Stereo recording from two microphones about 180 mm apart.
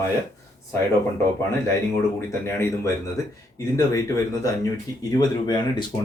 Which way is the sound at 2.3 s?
15° left (ahead or behind).